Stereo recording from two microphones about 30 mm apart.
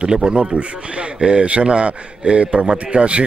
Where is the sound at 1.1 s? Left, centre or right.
Right.